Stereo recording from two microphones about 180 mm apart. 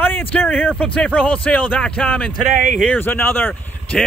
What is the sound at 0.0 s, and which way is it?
Speech, 10° left (ahead or behind).